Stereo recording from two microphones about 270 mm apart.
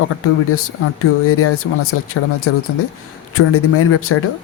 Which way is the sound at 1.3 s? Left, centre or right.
Left.